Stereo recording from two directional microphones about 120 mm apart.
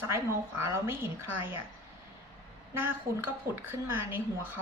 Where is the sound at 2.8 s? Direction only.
20° right (ahead or behind).